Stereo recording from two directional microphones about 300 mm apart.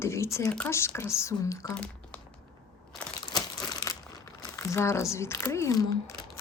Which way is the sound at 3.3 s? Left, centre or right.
Centre.